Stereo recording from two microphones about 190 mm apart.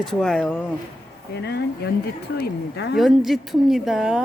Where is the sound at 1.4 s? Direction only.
60° left (ahead or behind).